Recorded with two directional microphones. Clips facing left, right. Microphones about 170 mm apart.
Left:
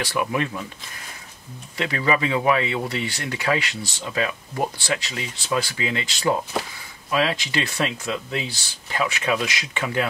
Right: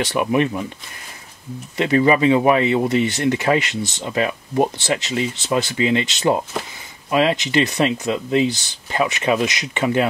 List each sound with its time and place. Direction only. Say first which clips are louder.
0.0 s speech: right 6 dB; 20° right (ahead or behind)
1.8 s speech: right 7 dB; 25° right (ahead or behind)